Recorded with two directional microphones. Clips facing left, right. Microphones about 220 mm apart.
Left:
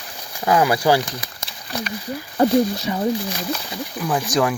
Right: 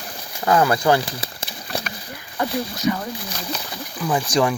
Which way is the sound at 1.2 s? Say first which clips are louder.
Right 4 dB; 30° right (ahead or behind).